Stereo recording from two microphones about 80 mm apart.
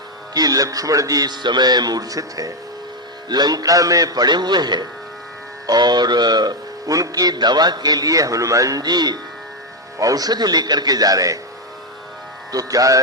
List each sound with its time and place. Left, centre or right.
0.3 s speech: right
3.2 s speech: right
10.0 s speech: right
12.5 s speech: right